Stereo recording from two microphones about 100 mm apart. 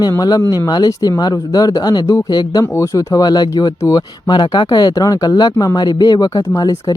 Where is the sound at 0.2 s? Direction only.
40° left (ahead or behind).